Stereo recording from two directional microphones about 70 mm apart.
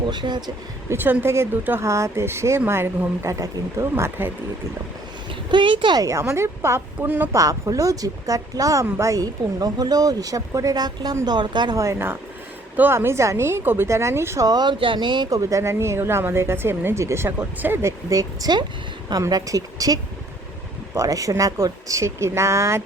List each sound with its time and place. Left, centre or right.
0.1 s speech: right
0.9 s a woman's voice: right
3.2 s speech: right
5.5 s speech: right
6.1 s speech: right
7.7 s speech: right
11.3 s speech: right
11.8 s speech: right
14.4 s speech: right
15.4 s speech: right
17.8 s speech: right